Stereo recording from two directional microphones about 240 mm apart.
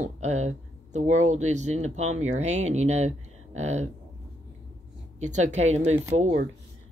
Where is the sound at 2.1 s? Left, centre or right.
Right.